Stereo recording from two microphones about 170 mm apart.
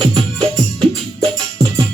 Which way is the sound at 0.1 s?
20° right (ahead or behind).